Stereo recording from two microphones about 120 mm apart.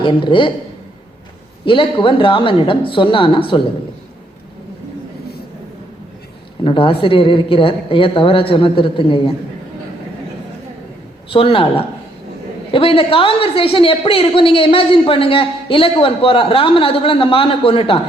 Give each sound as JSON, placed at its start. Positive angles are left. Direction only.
{"t": 0.0, "sound": "a woman's voice", "side_deg": 45}
{"t": 1.6, "sound": "a woman's voice", "side_deg": 45}
{"t": 6.7, "sound": "a woman's voice", "side_deg": 45}
{"t": 11.3, "sound": "a woman's voice", "side_deg": 50}